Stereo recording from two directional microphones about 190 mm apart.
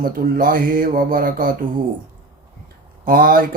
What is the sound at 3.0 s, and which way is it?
Speech, 50° right (ahead or behind).